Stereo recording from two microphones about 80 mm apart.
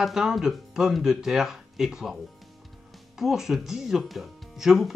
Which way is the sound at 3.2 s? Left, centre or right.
Centre.